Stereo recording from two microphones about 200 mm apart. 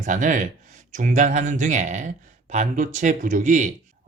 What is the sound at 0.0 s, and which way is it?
Speech, 40° right (ahead or behind).